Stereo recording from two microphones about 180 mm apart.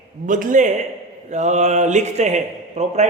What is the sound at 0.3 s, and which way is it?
A man's voice, 45° right (ahead or behind).